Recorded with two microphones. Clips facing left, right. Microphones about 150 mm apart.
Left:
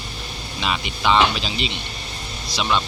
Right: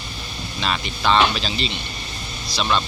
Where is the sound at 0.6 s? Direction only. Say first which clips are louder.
Even; 15° left (ahead or behind).